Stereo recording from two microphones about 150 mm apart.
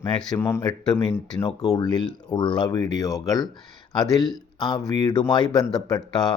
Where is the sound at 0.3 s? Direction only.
15° left (ahead or behind).